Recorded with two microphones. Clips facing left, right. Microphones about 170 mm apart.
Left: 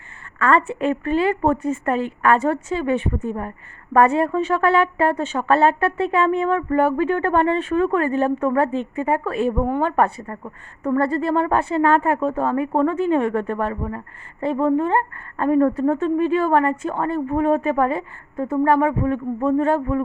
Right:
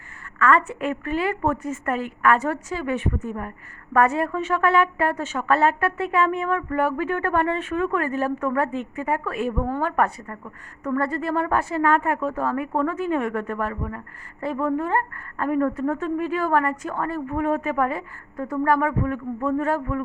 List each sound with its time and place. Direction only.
0.3 s a woman's voice: 30° left (ahead or behind)